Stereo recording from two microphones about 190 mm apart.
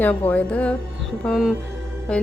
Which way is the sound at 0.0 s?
10° left (ahead or behind).